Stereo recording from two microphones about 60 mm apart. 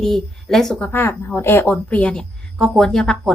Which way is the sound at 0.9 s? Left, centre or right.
Left.